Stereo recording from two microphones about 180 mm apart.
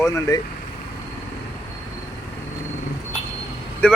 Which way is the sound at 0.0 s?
15° left (ahead or behind).